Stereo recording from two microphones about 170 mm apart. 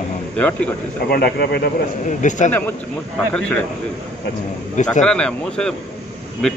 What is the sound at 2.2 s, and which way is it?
Speech, 45° left (ahead or behind).